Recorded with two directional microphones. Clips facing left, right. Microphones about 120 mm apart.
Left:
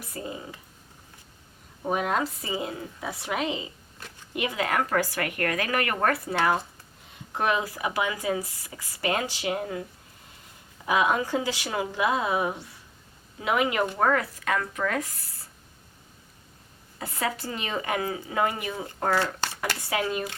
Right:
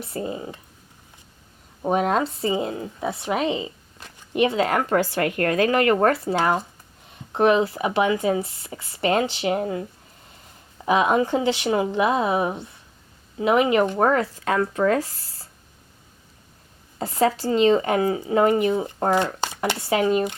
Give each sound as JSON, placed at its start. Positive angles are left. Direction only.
{"t": 0.0, "sound": "speech", "side_deg": -30}
{"t": 1.8, "sound": "speech", "side_deg": -30}
{"t": 7.3, "sound": "speech", "side_deg": -25}
{"t": 10.8, "sound": "speech", "side_deg": -25}
{"t": 17.0, "sound": "speech", "side_deg": -30}